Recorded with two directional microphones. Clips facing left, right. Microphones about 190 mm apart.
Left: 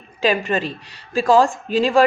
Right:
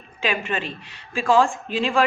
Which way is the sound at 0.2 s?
35° left (ahead or behind).